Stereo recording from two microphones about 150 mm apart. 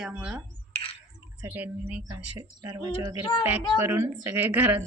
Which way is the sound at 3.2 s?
35° left (ahead or behind).